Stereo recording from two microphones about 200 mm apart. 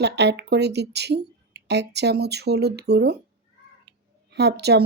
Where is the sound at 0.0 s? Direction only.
60° right (ahead or behind).